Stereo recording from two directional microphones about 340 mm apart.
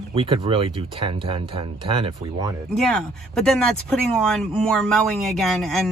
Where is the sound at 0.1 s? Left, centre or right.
Centre.